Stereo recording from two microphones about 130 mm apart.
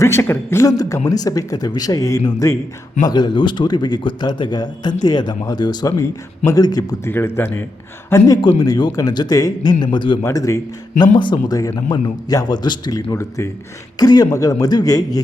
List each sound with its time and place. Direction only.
0.0 s a man's voice: 20° left (ahead or behind)
7.1 s speech: 15° left (ahead or behind)
8.4 s a man's voice: 35° left (ahead or behind)
10.2 s a man's voice: 25° left (ahead or behind)